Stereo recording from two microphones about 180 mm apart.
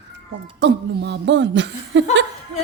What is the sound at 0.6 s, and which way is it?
Speech, 75° right (ahead or behind).